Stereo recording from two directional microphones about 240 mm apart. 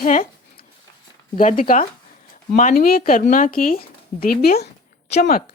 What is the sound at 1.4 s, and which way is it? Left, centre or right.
Speech, left.